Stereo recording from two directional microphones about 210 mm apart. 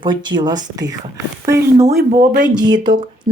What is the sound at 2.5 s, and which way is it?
Speech, 20° right (ahead or behind).